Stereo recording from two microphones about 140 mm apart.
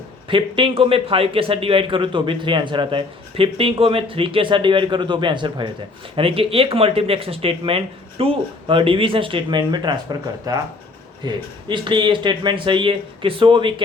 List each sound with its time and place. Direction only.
0.3 s a man's voice: 40° right (ahead or behind)